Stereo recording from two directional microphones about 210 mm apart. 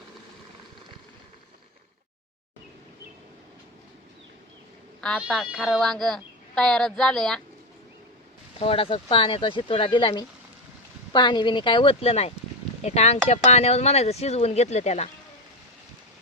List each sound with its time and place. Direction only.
4.9 s speech: 5° left (ahead or behind)
8.5 s speech: 25° left (ahead or behind)